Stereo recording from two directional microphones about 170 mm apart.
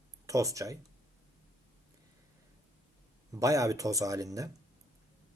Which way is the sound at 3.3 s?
20° right (ahead or behind).